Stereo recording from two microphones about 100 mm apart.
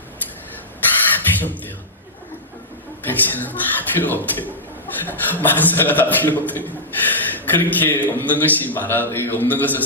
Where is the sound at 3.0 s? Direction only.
15° left (ahead or behind).